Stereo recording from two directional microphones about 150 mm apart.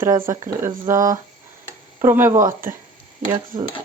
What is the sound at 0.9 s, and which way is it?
Speech, 20° right (ahead or behind).